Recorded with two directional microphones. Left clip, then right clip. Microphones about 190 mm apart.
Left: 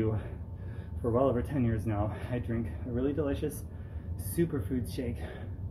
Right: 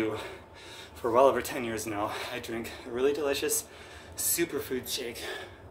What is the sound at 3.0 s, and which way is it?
Speech, 20° right (ahead or behind).